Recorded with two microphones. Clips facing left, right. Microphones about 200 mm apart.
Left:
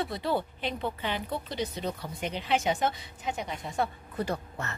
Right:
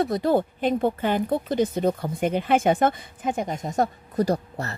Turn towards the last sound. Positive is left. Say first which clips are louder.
# right 9 dB
turn(degrees=-40)  # may be behind; listen again after turning